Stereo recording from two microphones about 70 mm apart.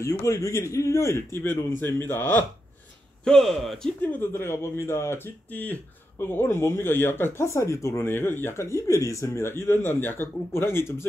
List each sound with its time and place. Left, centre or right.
0.2 s a man's voice: left
3.3 s speech: centre
4.0 s speech: left
4.3 s speech: left
8.1 s speech: left